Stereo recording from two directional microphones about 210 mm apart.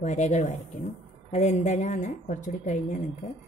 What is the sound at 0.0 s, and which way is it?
A woman's voice, 35° left (ahead or behind).